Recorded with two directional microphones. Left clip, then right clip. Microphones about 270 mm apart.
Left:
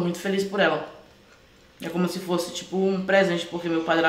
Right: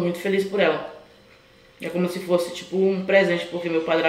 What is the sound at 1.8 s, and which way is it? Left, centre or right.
Speech, centre.